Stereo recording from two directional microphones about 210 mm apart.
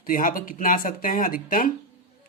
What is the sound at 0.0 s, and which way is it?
Speech, 40° left (ahead or behind).